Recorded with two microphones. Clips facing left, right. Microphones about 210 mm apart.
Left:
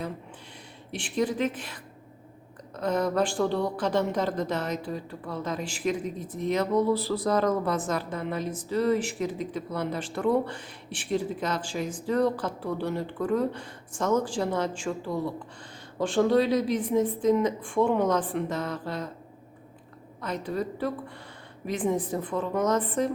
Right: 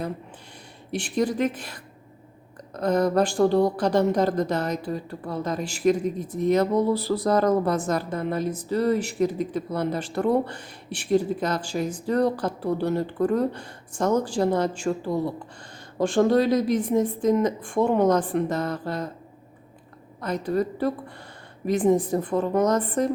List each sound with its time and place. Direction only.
0.9 s a woman's voice: 40° right (ahead or behind)
20.2 s speech: 40° right (ahead or behind)